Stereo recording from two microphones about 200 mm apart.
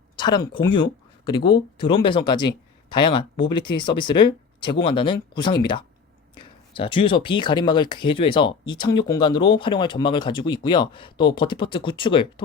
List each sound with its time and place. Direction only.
0.2 s speech: 25° left (ahead or behind)